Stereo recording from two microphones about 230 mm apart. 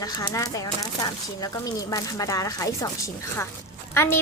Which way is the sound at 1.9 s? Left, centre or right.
Centre.